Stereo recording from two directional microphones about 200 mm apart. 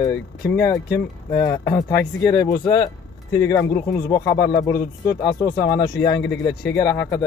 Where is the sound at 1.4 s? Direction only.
15° left (ahead or behind).